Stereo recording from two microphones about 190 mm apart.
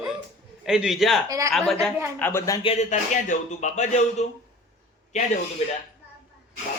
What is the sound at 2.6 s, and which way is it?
Speech, 35° left (ahead or behind).